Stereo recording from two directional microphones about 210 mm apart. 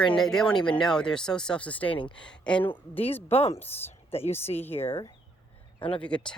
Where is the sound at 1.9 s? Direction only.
25° left (ahead or behind).